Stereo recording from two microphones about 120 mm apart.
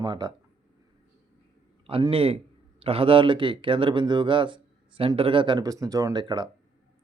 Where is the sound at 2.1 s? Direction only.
55° right (ahead or behind).